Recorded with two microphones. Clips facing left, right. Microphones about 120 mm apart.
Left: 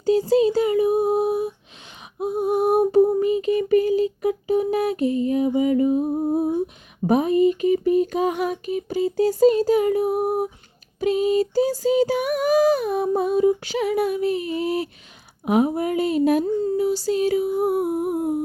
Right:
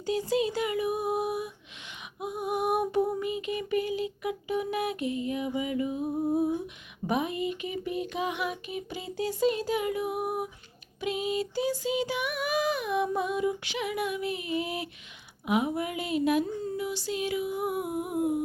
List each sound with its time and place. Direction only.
0.0 s child singing: 35° left (ahead or behind)
2.1 s a sound: 30° left (ahead or behind)
7.1 s female singing: 40° left (ahead or behind)